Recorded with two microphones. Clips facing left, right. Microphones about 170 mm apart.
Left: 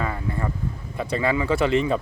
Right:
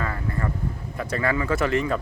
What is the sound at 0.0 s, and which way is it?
Vehicle, 15° left (ahead or behind).